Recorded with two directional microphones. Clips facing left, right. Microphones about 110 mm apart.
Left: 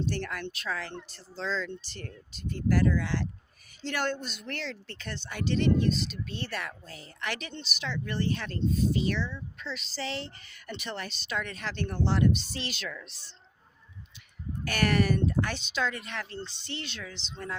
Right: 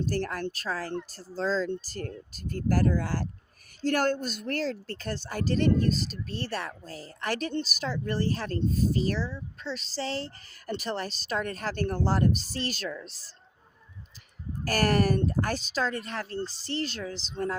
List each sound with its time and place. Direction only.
0.0 s speech: 40° right (ahead or behind)
12.9 s a woman's voice: 25° right (ahead or behind)
14.6 s speech: 40° right (ahead or behind)